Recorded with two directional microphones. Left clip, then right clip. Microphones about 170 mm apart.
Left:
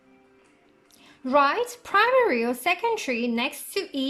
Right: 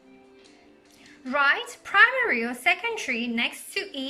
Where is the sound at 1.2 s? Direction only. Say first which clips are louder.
Left 2 dB; 25° left (ahead or behind).